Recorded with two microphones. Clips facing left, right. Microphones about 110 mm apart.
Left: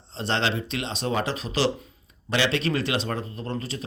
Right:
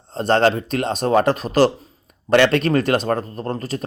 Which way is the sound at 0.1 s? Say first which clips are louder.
Right 10 dB; 50° right (ahead or behind).